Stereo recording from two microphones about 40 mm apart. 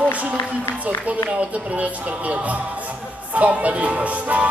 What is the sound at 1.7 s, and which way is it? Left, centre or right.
Music, right.